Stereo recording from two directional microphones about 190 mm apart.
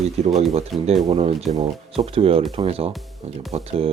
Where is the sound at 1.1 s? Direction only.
35° right (ahead or behind).